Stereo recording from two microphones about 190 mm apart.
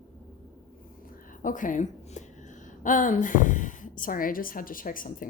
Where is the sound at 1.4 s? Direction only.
45° left (ahead or behind).